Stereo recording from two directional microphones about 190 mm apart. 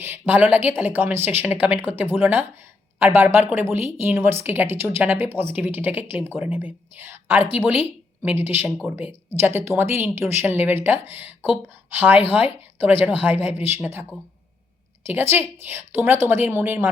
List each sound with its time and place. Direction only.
0.0 s speech: 10° right (ahead or behind)